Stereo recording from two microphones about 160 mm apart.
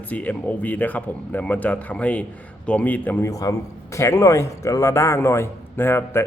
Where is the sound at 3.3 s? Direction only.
20° left (ahead or behind).